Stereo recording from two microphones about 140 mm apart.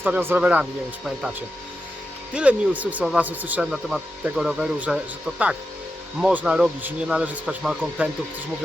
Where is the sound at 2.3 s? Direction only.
10° right (ahead or behind).